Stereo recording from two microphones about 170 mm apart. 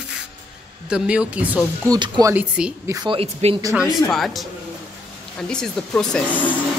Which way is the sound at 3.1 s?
35° right (ahead or behind).